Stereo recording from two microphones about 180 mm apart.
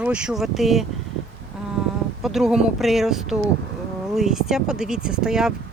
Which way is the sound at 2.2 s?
Centre (ahead or behind).